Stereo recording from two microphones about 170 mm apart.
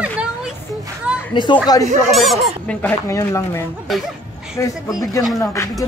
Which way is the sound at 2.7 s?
10° left (ahead or behind).